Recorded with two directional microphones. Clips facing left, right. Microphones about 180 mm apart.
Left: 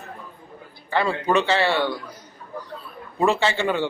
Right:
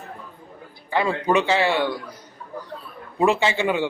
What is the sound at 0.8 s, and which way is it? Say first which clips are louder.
A man's voice: right 1 dB; 15° right (ahead or behind).